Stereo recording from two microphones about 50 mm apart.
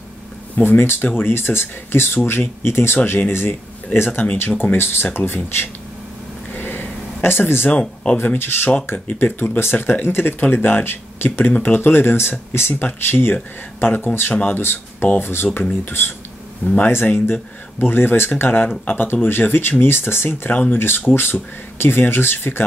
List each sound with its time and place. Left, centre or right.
0.7 s speech: left
4.5 s speech: left
4.7 s speech: left
6.5 s a sound: left
7.8 s speech: centre
8.4 s speech: left
11.4 s speech: left
16.6 s speech: left
17.1 s speech: left
20.2 s speech: left